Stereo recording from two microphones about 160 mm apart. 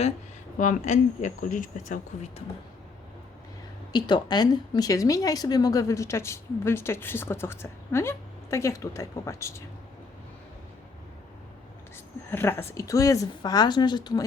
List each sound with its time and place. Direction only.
0.6 s speech: 50° left (ahead or behind)
3.9 s speech: 25° left (ahead or behind)
12.3 s speech: 15° left (ahead or behind)